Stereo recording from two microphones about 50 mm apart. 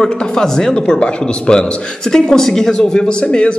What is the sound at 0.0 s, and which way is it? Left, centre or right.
A man's voice, centre.